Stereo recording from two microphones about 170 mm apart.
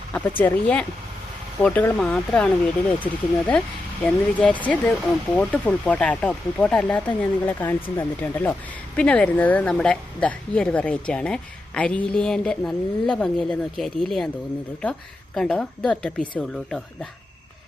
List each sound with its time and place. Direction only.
0.1 s a woman's voice: 10° left (ahead or behind)
15.4 s a woman's voice: 5° left (ahead or behind)